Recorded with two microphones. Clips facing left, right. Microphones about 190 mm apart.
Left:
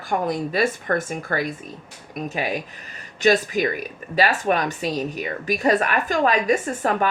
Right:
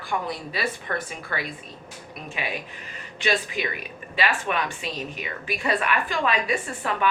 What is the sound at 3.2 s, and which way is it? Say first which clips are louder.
Speech: left 8 dB; 40° left (ahead or behind).